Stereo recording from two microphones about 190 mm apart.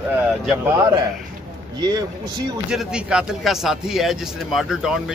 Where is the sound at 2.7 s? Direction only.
5° right (ahead or behind).